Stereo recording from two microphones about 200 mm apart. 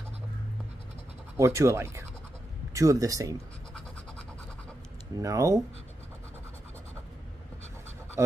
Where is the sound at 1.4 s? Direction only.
15° right (ahead or behind).